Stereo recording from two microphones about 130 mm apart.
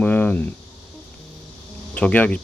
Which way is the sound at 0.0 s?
10° left (ahead or behind).